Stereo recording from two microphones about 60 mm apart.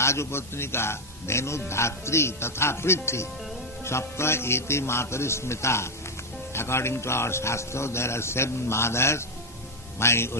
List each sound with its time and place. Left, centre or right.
0.0 s a man's voice: left